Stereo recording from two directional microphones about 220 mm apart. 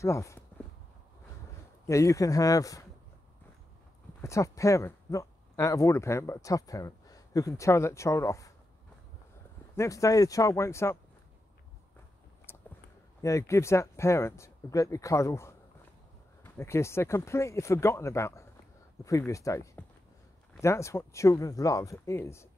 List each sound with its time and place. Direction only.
0.0 s speech: 15° left (ahead or behind)
1.9 s speech: 15° left (ahead or behind)
4.2 s speech: 15° left (ahead or behind)
9.8 s speech: 15° left (ahead or behind)
12.5 s a sound: 10° left (ahead or behind)
13.2 s speech: 15° left (ahead or behind)